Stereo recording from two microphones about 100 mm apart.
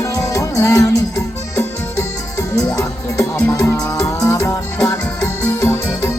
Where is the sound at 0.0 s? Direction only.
35° left (ahead or behind).